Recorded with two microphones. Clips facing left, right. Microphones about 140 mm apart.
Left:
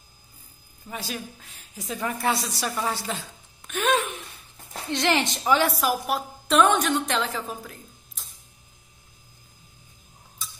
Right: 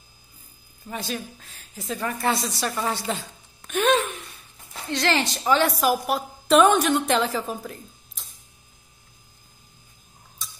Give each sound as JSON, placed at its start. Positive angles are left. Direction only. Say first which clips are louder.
{"t": 0.8, "sound": "a woman's voice", "louder": "right 3 dB", "side_deg": 5}
{"t": 3.6, "sound": "a sound", "louder": "right 3 dB", "side_deg": 0}
{"t": 4.8, "sound": "a woman's voice", "louder": "even", "side_deg": 20}
{"t": 5.7, "sound": "a woman's voice", "louder": "right 3 dB", "side_deg": 0}
{"t": 10.4, "sound": "tick-tock", "louder": "left 1 dB", "side_deg": 0}